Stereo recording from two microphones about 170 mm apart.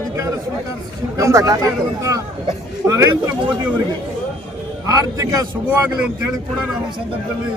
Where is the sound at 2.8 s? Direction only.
20° right (ahead or behind).